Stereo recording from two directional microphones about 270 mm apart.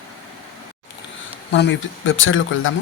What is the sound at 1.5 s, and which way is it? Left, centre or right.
Speech, left.